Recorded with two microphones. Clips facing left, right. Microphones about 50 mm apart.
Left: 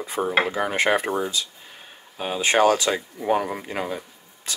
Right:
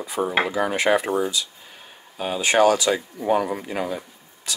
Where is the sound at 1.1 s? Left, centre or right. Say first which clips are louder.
Right 2 dB; centre.